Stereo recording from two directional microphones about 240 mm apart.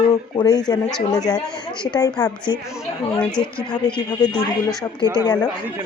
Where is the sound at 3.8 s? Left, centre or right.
Centre.